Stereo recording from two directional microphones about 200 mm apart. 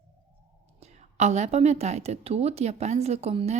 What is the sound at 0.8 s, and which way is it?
A woman's voice, 35° right (ahead or behind).